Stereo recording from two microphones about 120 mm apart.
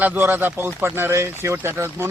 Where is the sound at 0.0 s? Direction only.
15° right (ahead or behind).